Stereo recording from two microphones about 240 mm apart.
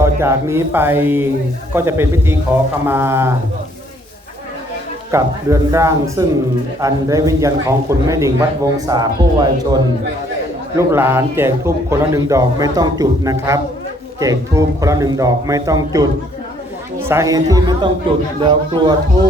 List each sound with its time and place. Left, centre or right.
0.0 s a man's voice: centre
5.1 s a man's voice: centre